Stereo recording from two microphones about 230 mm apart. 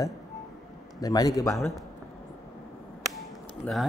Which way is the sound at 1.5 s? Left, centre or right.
Centre.